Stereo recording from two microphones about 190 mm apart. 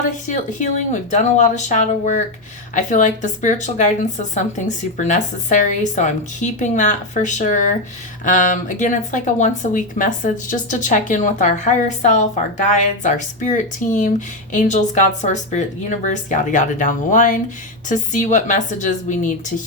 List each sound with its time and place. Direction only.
0.3 s speech: 40° left (ahead or behind)